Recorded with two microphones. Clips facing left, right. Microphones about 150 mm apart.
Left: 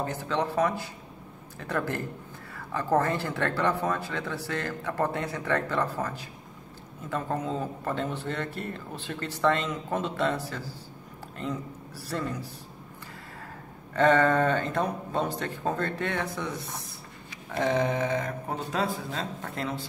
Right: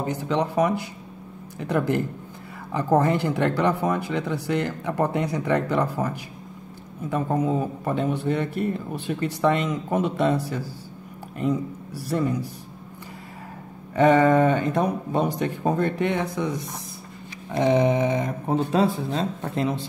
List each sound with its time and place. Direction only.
0.0 s speech: 15° right (ahead or behind)
13.9 s speech: 15° right (ahead or behind)